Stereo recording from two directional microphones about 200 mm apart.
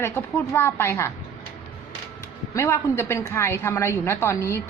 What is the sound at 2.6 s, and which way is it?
A woman's voice, 15° left (ahead or behind).